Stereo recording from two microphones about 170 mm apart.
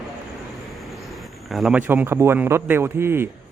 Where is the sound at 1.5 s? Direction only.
Centre (ahead or behind).